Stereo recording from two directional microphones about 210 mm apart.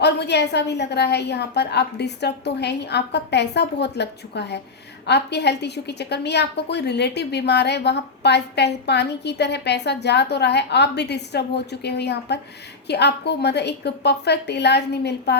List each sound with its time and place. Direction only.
0.0 s a woman's voice: 55° left (ahead or behind)